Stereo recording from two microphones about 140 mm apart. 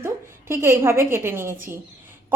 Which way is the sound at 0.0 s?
15° right (ahead or behind).